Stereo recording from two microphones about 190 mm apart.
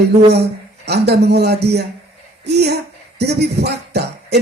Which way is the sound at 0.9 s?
60° right (ahead or behind).